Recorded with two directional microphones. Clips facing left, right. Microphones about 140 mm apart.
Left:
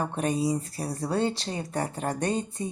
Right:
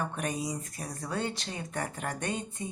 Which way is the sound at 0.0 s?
30° left (ahead or behind).